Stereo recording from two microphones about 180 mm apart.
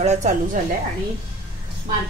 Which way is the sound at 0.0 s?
40° right (ahead or behind).